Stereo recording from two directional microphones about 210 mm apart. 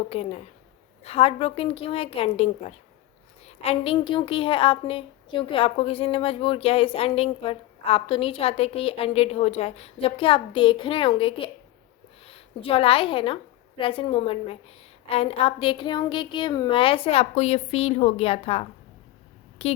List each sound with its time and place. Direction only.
0.1 s a woman's voice: 30° left (ahead or behind)
3.4 s a sound: 30° left (ahead or behind)
3.9 s a woman's voice: 20° left (ahead or behind)